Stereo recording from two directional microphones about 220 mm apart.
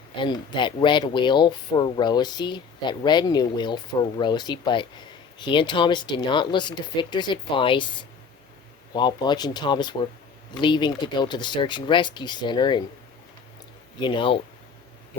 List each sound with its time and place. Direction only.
0.2 s speech: 20° left (ahead or behind)
14.0 s speech: 20° left (ahead or behind)